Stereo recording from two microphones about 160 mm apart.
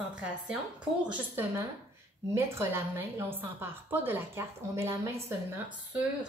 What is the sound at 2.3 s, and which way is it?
A woman's voice, 15° right (ahead or behind).